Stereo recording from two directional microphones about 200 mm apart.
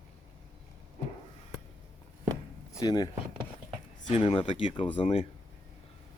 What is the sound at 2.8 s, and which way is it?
Speech, 20° left (ahead or behind).